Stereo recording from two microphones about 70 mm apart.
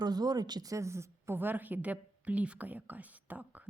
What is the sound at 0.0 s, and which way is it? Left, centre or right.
Speech, right.